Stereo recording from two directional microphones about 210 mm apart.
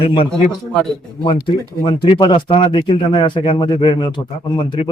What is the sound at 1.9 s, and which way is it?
Speech, 25° left (ahead or behind).